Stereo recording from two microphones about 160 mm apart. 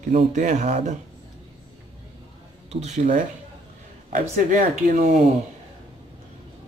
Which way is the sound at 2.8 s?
50° right (ahead or behind).